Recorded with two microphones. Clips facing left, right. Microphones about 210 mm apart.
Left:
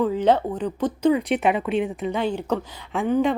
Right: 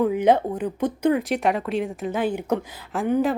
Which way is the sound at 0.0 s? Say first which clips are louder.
Right 1 dB; 10° right (ahead or behind).